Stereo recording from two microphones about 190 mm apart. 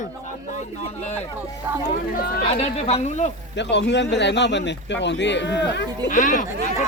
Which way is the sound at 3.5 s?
65° left (ahead or behind).